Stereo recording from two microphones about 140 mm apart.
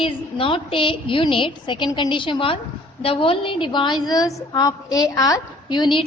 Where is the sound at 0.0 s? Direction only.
40° left (ahead or behind).